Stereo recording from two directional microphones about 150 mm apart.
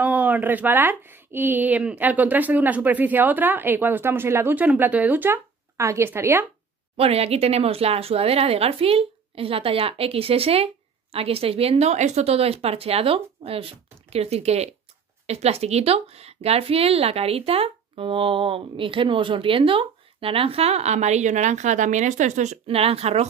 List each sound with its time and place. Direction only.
0.0 s speech: 10° right (ahead or behind)
7.0 s a woman's voice: 40° right (ahead or behind)